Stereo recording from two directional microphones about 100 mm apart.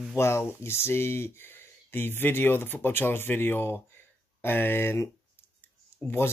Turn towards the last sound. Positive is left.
turn(degrees=25)  # may be behind; listen again after turning